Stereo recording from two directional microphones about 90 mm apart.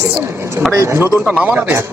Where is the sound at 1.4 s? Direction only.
20° right (ahead or behind).